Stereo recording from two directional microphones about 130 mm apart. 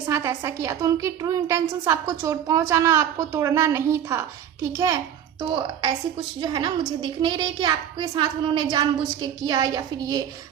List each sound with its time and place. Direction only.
0.1 s a woman's voice: 20° right (ahead or behind)
5.4 s a child's voice: 35° right (ahead or behind)